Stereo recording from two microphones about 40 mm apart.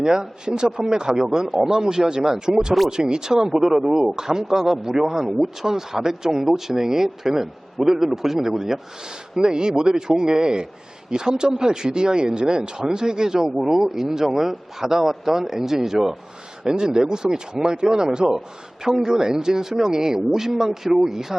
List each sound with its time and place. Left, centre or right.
0.0 s a man's voice: centre
2.2 s a man's voice: centre
2.9 s a man's voice: centre
16.7 s a man's voice: centre